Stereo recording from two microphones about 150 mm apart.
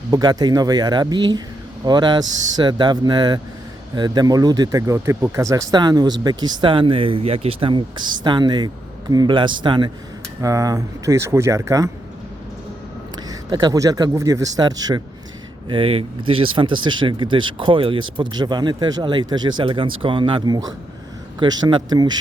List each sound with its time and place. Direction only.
0.1 s speech: 25° right (ahead or behind)
13.2 s speech: 30° right (ahead or behind)
15.7 s speech: 40° right (ahead or behind)